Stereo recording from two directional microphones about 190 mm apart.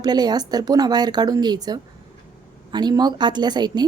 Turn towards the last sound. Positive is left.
turn(degrees=-20)  # may be behind; listen again after turning